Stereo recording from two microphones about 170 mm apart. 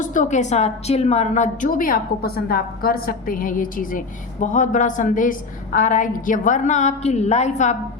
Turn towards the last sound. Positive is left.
turn(degrees=45)  # may be behind; listen again after turning